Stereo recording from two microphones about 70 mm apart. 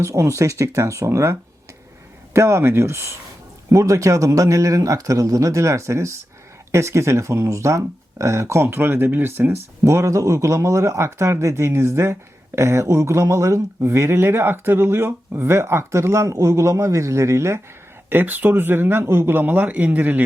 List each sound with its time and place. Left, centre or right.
0.0 s speech: right
9.8 s speech: right
18.1 s speech: right